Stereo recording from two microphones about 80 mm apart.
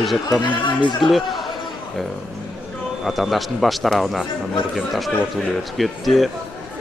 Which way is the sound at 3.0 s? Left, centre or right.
Centre.